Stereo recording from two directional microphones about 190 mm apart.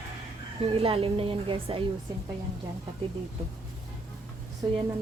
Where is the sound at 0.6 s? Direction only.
30° right (ahead or behind).